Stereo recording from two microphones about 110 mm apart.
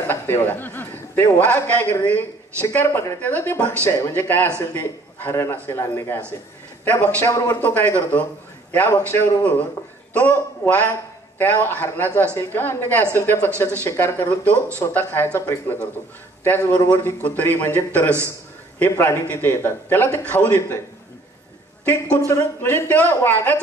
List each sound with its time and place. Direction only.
0.0 s a man's voice: 20° left (ahead or behind)
22.3 s speech: 20° left (ahead or behind)